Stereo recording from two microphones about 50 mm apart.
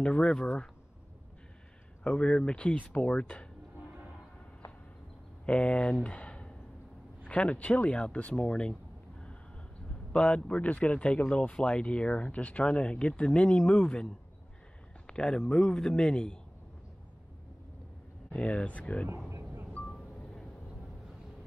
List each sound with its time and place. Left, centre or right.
0.0 s speech: left
2.0 s speech: left
2.7 s speech: left
5.4 s speech: left
6.0 s a sound: left
7.2 s speech: left
10.1 s speech: centre
10.4 s speech: left
15.0 s a man's voice: centre
18.3 s speech: left
19.9 s a sound: centre